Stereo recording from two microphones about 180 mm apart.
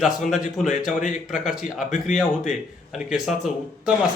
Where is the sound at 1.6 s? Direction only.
45° left (ahead or behind).